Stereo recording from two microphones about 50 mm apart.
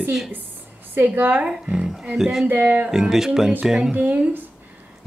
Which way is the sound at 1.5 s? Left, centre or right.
Centre.